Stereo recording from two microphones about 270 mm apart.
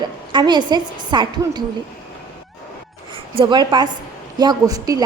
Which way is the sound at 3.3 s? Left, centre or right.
Centre.